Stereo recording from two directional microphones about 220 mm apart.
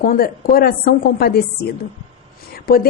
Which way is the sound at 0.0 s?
40° left (ahead or behind).